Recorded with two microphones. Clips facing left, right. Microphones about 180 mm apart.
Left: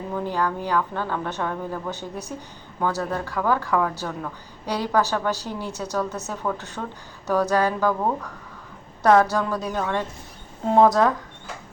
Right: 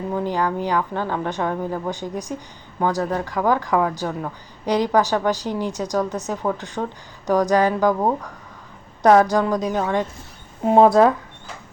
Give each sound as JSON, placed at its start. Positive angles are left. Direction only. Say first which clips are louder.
{"t": 0.1, "sound": "a woman's voice", "louder": "right 2 dB", "side_deg": -15}